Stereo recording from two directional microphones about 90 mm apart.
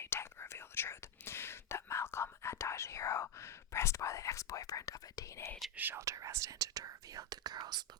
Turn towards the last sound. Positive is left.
turn(degrees=-50)  # may be behind; listen again after turning